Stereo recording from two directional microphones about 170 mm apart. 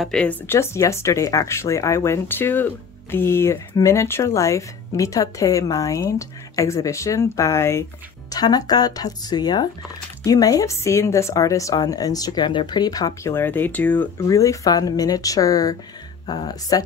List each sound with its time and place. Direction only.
0.0 s speech: 5° left (ahead or behind); by 16.8 s 20° left (ahead or behind)